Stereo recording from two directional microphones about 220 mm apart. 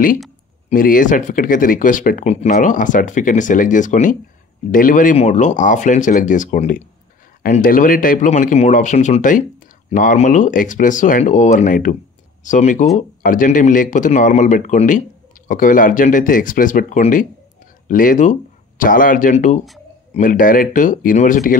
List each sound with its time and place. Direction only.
0.7 s speech: 40° left (ahead or behind)